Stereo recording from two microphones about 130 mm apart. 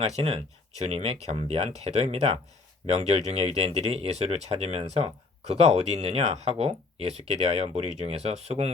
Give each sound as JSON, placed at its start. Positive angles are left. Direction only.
{"t": 0.0, "sound": "speech", "side_deg": -50}